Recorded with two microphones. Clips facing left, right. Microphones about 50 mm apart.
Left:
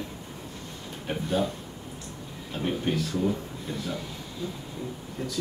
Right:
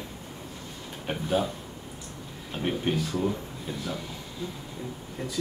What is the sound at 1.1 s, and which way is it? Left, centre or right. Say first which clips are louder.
Speech: even; centre.